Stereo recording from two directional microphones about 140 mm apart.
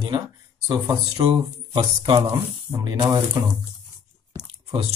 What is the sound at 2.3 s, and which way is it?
Speech, 25° right (ahead or behind).